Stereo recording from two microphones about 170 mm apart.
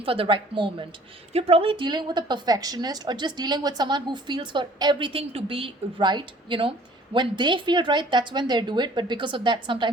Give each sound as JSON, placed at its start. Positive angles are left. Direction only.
{"t": 0.0, "sound": "a woman's voice", "side_deg": -30}